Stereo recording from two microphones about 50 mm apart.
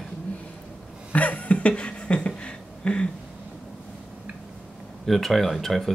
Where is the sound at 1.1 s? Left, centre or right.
Left.